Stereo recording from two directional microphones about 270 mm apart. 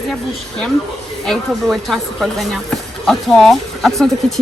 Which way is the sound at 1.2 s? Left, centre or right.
Centre.